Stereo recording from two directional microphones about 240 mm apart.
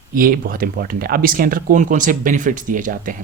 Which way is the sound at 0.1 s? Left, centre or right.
Right.